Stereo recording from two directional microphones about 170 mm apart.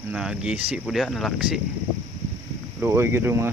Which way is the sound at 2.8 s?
15° right (ahead or behind).